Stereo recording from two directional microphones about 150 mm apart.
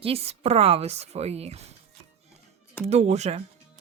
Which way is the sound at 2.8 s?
50° right (ahead or behind).